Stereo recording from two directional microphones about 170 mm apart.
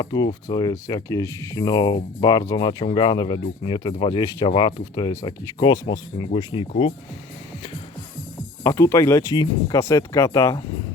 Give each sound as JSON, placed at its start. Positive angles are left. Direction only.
{"t": 0.0, "sound": "speech", "side_deg": 25}
{"t": 8.6, "sound": "speech", "side_deg": 15}